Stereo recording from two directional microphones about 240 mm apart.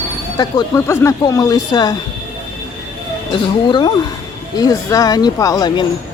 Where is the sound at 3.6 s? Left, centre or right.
Centre.